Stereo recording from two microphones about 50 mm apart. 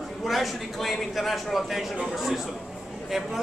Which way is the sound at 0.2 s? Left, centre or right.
Centre.